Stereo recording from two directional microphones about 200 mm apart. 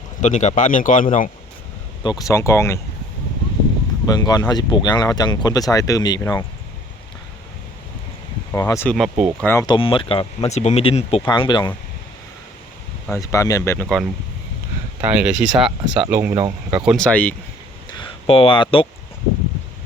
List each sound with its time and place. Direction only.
0.2 s speech: 35° left (ahead or behind)
2.0 s speech: 20° left (ahead or behind)
4.0 s speech: 20° left (ahead or behind)
8.5 s speech: 15° left (ahead or behind)
9.0 s speech: 5° right (ahead or behind)
9.4 s speech: 15° left (ahead or behind)
13.1 s speech: 15° left (ahead or behind)
13.8 s speech: centre (ahead or behind)
16.8 s speech: centre (ahead or behind)
17.9 s speech: 25° left (ahead or behind)